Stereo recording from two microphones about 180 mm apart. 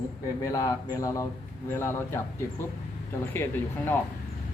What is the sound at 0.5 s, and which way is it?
Speech, 20° left (ahead or behind).